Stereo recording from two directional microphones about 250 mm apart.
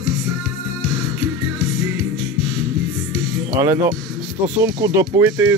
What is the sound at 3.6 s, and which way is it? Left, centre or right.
Speech, centre.